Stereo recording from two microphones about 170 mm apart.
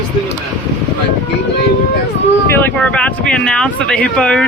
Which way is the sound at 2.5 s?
10° left (ahead or behind).